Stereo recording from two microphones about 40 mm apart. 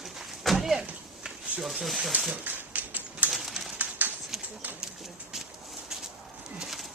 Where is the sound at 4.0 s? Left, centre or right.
Right.